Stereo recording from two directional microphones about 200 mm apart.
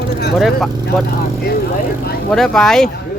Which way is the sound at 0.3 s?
Centre (ahead or behind).